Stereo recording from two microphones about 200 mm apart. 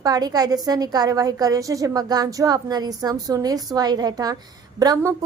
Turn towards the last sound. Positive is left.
turn(degrees=-15)  # may be behind; listen again after turning